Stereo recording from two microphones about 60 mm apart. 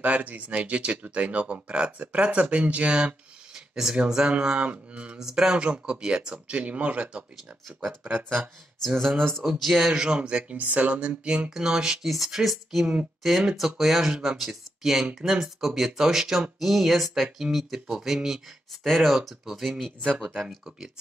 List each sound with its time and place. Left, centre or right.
0.0 s speech: right
5.2 s speech: centre
8.8 s speech: centre